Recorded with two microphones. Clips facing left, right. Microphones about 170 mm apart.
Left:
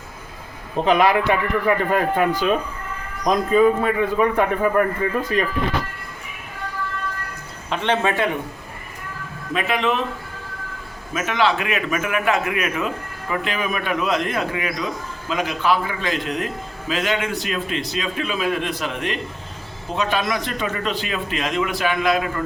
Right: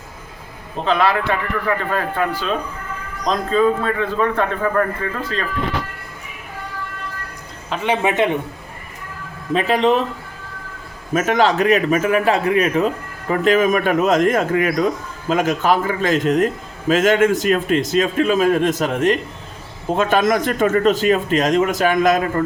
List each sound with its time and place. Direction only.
0.9 s a man's voice: 15° left (ahead or behind)
7.7 s a man's voice: 5° right (ahead or behind)
8.0 s a man's voice: 20° right (ahead or behind)
9.5 s a man's voice: 35° right (ahead or behind)
11.1 s a man's voice: 45° right (ahead or behind)